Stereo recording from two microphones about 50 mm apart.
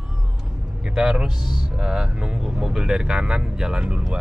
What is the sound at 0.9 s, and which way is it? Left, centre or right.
Speech, centre.